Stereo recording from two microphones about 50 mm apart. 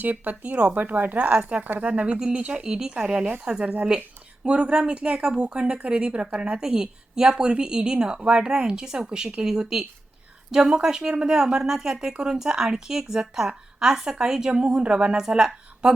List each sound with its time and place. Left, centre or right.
0.0 s speech: right
2.6 s a woman's voice: centre
6.6 s a woman's voice: centre